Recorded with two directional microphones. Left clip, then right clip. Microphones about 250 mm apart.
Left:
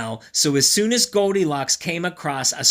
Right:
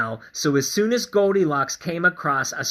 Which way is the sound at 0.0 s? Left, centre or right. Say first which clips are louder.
Left 1 dB; left.